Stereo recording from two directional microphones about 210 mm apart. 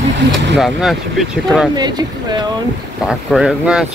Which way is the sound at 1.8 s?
20° right (ahead or behind).